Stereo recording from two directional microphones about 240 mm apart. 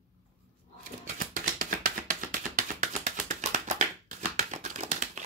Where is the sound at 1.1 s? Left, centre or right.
Right.